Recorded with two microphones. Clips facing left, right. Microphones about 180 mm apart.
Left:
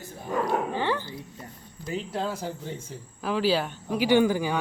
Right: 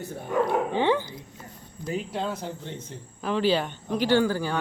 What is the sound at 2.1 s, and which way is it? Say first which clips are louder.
Speech: even; 5° left (ahead or behind).